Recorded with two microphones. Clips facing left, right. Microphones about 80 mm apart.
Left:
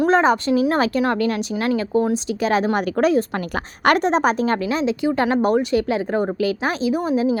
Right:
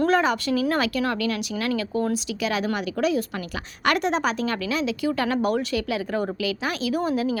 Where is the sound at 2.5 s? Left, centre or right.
Left.